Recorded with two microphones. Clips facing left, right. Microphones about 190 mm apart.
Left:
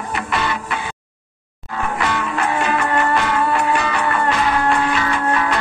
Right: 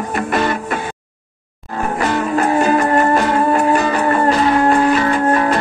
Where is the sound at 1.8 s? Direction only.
40° right (ahead or behind).